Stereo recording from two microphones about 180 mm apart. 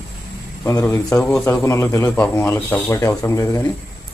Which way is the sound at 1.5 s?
15° left (ahead or behind).